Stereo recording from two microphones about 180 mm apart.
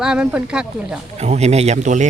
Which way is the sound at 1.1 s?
40° right (ahead or behind).